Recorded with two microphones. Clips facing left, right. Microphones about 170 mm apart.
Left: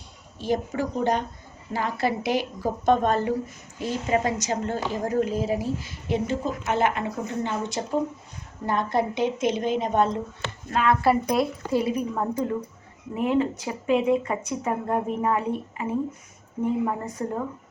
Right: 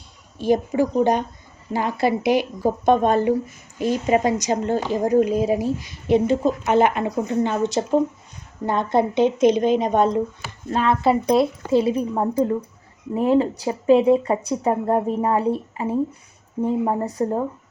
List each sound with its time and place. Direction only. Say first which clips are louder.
0.3 s a woman's voice: right 7 dB; 15° right (ahead or behind); by 17.4 s 35° right (ahead or behind)